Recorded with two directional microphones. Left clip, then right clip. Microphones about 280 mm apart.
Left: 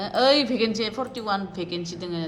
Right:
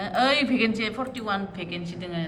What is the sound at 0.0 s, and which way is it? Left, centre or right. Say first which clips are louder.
A woman's voice: left 2 dB; centre.